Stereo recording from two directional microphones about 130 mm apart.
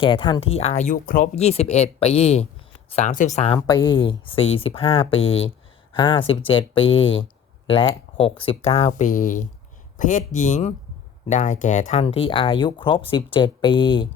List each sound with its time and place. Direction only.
0.0 s speech: 40° left (ahead or behind)
0.9 s speech: 90° left
1.4 s speech: 55° left (ahead or behind)
2.9 s speech: 70° left (ahead or behind)
3.7 s speech: 35° left (ahead or behind); by 8.9 s 50° left (ahead or behind)
8.9 s speech: 80° left
10.0 s speech: 75° left (ahead or behind)
12.0 s speech: 45° left (ahead or behind)